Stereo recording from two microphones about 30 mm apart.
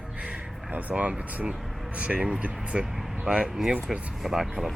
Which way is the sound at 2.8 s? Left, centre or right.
Centre.